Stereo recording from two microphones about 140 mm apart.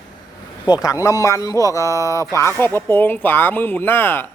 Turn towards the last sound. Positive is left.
turn(degrees=15)  # may be behind; listen again after turning